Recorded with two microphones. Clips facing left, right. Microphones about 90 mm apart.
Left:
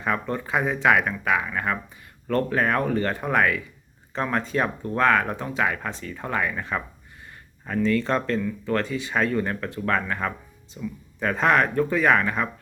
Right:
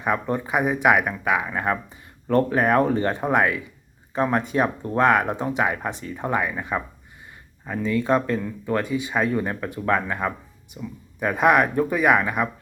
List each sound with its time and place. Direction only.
0.0 s speech: 20° right (ahead or behind)